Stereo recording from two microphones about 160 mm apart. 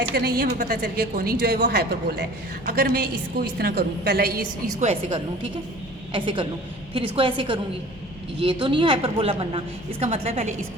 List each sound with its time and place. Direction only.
0.1 s a woman's voice: 75° right (ahead or behind)
6.1 s a woman's voice: 30° right (ahead or behind)